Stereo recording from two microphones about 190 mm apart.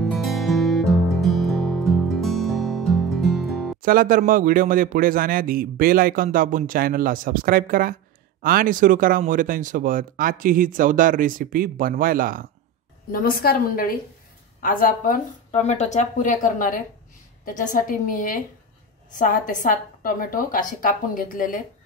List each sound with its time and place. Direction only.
0.0 s music: centre (ahead or behind)
3.8 s speech: 50° right (ahead or behind)
13.1 s a woman's voice: 50° left (ahead or behind)